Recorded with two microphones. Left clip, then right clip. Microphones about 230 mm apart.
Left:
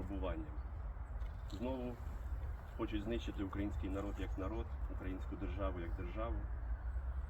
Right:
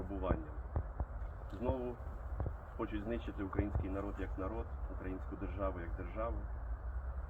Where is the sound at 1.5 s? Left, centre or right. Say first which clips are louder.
Right 4 dB; centre.